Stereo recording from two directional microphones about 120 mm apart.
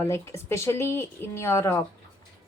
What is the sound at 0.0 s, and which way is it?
A woman's voice, 20° left (ahead or behind).